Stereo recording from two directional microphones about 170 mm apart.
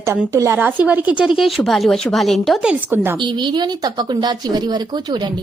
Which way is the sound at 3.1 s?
25° right (ahead or behind).